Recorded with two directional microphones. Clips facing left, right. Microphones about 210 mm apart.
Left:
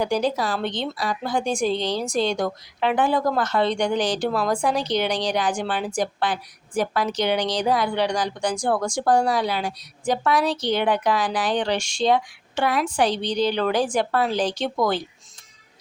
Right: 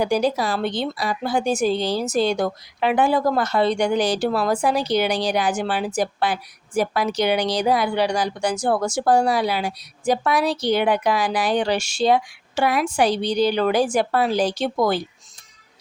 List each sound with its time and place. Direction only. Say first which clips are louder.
0.0 s speech: right 2 dB; 10° right (ahead or behind)